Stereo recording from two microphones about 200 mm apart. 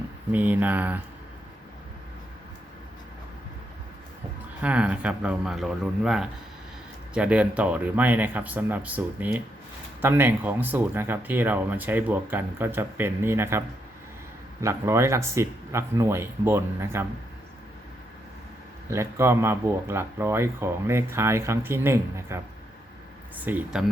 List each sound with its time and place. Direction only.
0.3 s speech: 10° right (ahead or behind)
4.6 s speech: 5° right (ahead or behind)
14.6 s speech: 15° right (ahead or behind)
18.9 s speech: 15° right (ahead or behind)
23.5 s speech: 10° right (ahead or behind)